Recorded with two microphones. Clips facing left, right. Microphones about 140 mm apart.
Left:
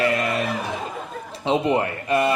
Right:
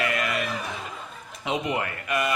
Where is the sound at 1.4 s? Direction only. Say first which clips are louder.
Left 7 dB; 30° left (ahead or behind).